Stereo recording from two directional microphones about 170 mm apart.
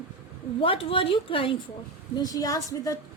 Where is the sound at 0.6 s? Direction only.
30° left (ahead or behind).